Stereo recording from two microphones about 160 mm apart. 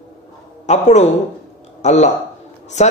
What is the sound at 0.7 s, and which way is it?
A man's voice, 45° left (ahead or behind).